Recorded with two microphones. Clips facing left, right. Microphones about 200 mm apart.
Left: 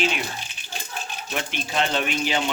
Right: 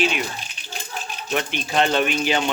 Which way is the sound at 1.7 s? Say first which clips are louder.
Right 5 dB; 60° right (ahead or behind).